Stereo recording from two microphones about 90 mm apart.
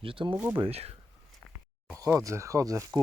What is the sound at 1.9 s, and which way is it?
Speech, 35° right (ahead or behind).